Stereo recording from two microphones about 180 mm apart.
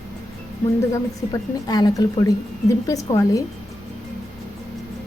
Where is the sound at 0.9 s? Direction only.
20° left (ahead or behind).